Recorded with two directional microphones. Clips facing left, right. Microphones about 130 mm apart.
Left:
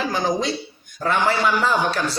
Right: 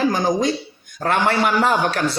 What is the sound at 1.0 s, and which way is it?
A man's voice, 60° right (ahead or behind).